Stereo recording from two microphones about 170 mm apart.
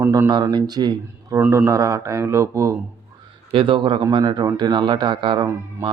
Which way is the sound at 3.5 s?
30° right (ahead or behind).